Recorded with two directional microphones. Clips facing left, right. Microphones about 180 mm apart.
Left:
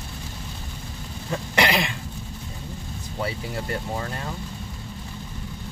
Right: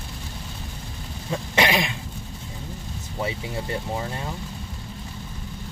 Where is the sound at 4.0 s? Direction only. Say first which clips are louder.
Right 1 dB; 15° right (ahead or behind).